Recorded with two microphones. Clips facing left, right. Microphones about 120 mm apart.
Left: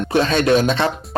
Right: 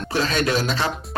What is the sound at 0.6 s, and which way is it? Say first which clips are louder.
Speech: left 6 dB; 60° left (ahead or behind).